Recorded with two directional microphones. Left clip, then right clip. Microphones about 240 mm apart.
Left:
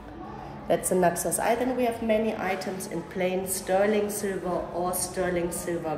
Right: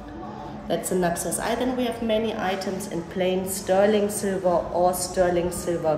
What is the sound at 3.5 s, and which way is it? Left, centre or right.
A woman's voice, centre.